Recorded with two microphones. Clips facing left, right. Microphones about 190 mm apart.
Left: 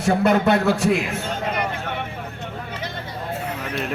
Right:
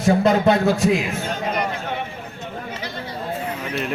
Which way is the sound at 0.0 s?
65° left (ahead or behind).